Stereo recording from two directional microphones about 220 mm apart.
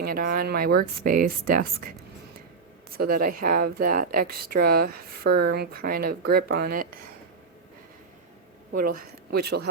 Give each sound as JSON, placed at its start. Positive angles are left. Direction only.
{"t": 0.0, "sound": "speech", "side_deg": -40}
{"t": 2.9, "sound": "speech", "side_deg": -40}
{"t": 8.7, "sound": "speech", "side_deg": -40}